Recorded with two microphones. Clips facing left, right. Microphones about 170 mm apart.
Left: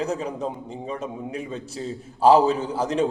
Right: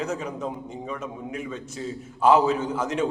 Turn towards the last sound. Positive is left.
turn(degrees=35)  # may be behind; listen again after turning